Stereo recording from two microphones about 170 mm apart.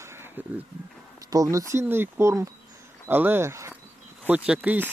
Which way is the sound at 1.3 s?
20° right (ahead or behind).